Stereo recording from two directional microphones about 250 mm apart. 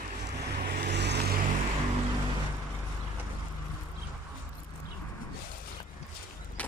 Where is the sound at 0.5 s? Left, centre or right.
Right.